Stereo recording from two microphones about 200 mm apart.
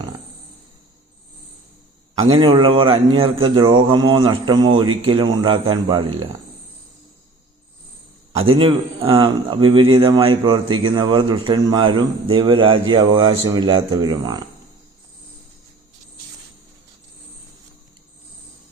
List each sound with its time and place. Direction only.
2.3 s a man's voice: 25° right (ahead or behind)
8.4 s a man's voice: 25° right (ahead or behind)